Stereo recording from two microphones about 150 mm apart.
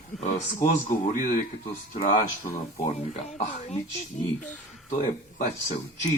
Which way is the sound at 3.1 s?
50° left (ahead or behind).